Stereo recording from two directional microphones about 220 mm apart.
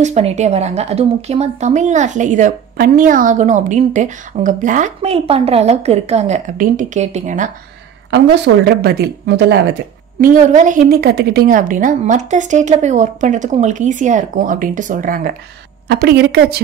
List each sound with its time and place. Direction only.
0.0 s speech: 30° right (ahead or behind)
8.6 s speech: 45° right (ahead or behind)
10.2 s speech: 35° right (ahead or behind)